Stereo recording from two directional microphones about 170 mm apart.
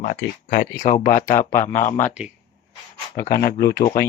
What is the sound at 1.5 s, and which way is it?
Speech, 15° left (ahead or behind).